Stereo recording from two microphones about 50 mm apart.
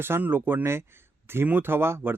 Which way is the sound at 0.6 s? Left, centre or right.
Right.